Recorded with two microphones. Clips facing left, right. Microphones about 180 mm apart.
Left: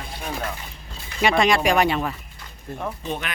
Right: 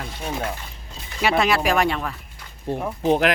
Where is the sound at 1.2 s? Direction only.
5° right (ahead or behind).